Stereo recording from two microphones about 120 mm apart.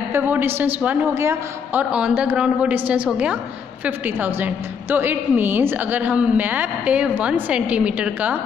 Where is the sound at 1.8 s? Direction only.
10° right (ahead or behind).